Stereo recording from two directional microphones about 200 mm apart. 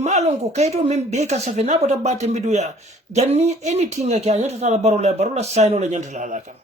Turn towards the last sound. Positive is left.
turn(degrees=-35)  # may be behind; listen again after turning